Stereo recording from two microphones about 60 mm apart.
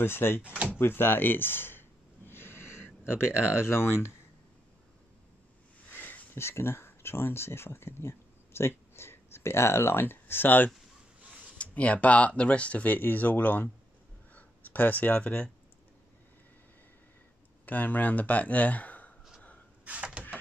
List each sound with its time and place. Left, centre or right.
0.0 s speech: left
0.4 s speech: right
0.7 s a sound: left
5.9 s wheeze: left
6.3 s speech: left
11.1 s a sound: right
11.5 s speech: left
17.6 s speech: left
19.8 s a sound: right